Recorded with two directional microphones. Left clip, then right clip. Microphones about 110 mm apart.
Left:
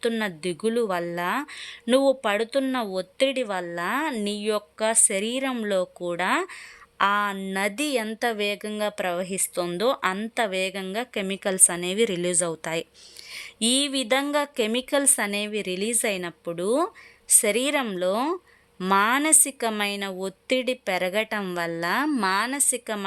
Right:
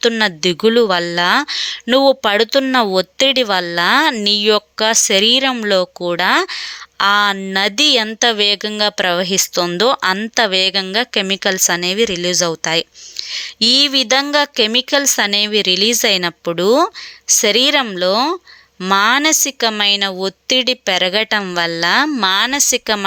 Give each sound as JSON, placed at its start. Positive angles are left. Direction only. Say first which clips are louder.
{"t": 0.2, "sound": "speech", "louder": "right 13 dB", "side_deg": -35}
{"t": 1.0, "sound": "speech", "louder": "right 12 dB", "side_deg": -20}
{"t": 1.3, "sound": "speech", "louder": "right 14 dB", "side_deg": -30}
{"t": 3.8, "sound": "speech", "louder": "right 14 dB", "side_deg": -30}
{"t": 7.0, "sound": "speech", "louder": "right 10 dB", "side_deg": -20}
{"t": 10.2, "sound": "speech", "louder": "right 11 dB", "side_deg": -25}
{"t": 11.5, "sound": "a woman's voice", "louder": "right 9 dB", "side_deg": -20}
{"t": 16.2, "sound": "speech", "louder": "right 13 dB", "side_deg": -40}
{"t": 17.3, "sound": "a woman's voice", "louder": "right 10 dB", "side_deg": -20}